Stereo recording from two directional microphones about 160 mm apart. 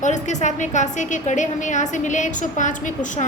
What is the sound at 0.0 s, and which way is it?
A woman's voice, 50° left (ahead or behind).